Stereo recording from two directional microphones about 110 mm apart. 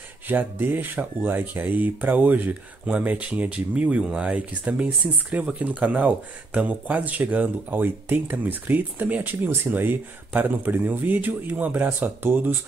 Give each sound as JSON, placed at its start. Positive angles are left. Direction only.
{"t": 0.3, "sound": "speech", "side_deg": -15}